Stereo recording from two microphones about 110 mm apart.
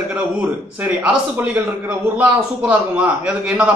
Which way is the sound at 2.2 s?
15° right (ahead or behind).